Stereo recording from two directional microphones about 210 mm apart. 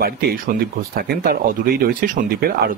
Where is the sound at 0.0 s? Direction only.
45° right (ahead or behind).